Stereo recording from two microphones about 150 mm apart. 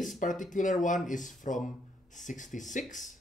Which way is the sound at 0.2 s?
60° left (ahead or behind).